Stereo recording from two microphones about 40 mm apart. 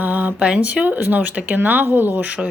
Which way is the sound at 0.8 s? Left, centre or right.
Right.